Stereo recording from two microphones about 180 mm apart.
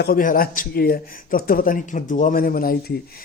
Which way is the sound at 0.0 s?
50° left (ahead or behind).